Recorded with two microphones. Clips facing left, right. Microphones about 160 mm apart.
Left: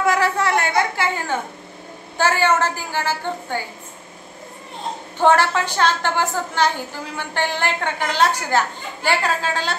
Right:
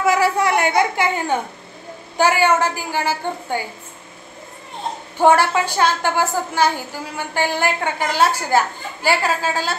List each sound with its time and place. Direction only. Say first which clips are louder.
0.0 s a sound: right 2 dB; 10° right (ahead or behind)
2.1 s a woman's voice: right 2 dB; 10° right (ahead or behind)
5.2 s a woman's voice: right 2 dB; 10° right (ahead or behind)